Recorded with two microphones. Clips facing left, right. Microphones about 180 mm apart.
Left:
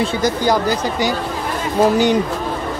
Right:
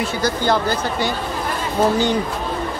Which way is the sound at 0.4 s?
15° left (ahead or behind).